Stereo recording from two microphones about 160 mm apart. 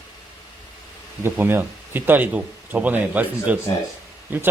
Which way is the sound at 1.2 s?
15° right (ahead or behind).